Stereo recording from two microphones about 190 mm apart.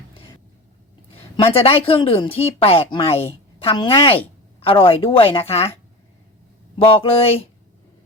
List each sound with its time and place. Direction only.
1.4 s speech: 30° left (ahead or behind)
6.7 s speech: 30° left (ahead or behind)